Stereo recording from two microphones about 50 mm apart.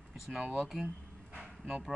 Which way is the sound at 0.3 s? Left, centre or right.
Centre.